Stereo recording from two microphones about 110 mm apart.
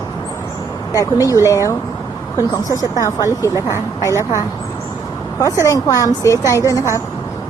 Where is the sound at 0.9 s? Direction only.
30° left (ahead or behind).